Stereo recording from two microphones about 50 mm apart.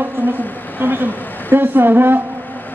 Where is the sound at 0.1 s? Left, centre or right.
Left.